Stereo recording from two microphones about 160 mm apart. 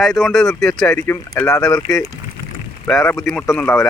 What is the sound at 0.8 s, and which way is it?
Speech, 15° left (ahead or behind).